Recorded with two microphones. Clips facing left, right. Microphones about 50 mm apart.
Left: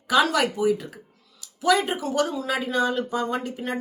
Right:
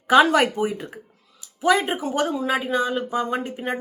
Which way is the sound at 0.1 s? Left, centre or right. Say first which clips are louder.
Right 5 dB; right.